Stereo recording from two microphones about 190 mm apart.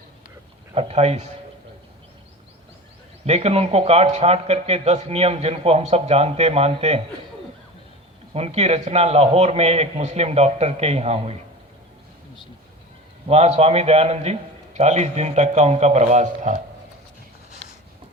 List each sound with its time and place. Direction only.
0.7 s a man's voice: 35° right (ahead or behind)
3.2 s a man's voice: 35° right (ahead or behind)
8.3 s a man's voice: 35° right (ahead or behind)
13.2 s a man's voice: 35° right (ahead or behind)